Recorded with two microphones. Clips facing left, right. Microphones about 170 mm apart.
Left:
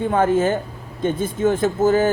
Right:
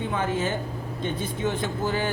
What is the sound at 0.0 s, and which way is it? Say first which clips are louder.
Speech: left 9 dB; 50° left (ahead or behind).